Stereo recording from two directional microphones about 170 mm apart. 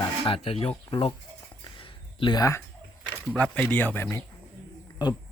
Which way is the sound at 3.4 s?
10° left (ahead or behind).